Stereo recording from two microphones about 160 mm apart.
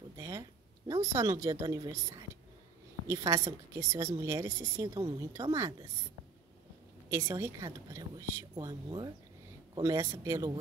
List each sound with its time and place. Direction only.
0.2 s a woman's voice: 20° right (ahead or behind)
7.1 s a woman's voice: 20° right (ahead or behind)